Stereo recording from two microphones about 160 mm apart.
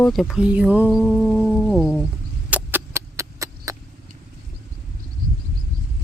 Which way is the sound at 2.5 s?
15° right (ahead or behind).